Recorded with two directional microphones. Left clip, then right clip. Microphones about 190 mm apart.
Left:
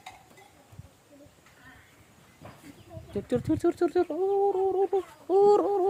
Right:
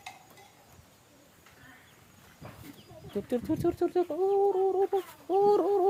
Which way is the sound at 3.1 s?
25° left (ahead or behind).